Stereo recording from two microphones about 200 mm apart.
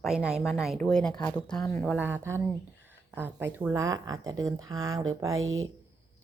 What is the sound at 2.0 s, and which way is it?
A woman's voice, 10° right (ahead or behind).